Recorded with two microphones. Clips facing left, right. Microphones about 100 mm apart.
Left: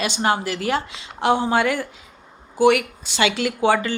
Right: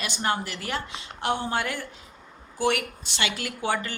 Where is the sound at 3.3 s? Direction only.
90° left.